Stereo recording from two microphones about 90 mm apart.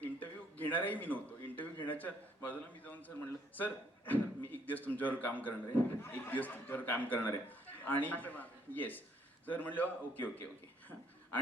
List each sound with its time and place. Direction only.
0.0 s a man's voice: 20° left (ahead or behind)